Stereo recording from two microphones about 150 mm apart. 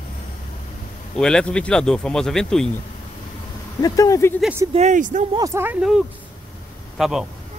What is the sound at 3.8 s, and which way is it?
Speech, 25° left (ahead or behind).